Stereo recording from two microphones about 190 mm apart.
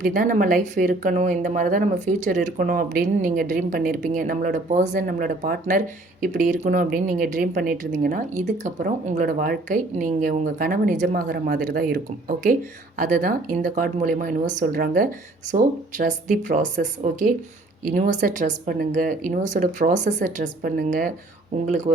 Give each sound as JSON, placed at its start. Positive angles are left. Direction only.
{"t": 0.0, "sound": "speech", "side_deg": -45}